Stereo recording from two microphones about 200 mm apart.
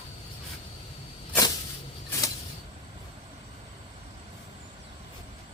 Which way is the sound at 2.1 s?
15° left (ahead or behind).